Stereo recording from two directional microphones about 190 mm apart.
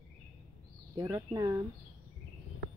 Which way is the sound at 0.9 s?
15° right (ahead or behind).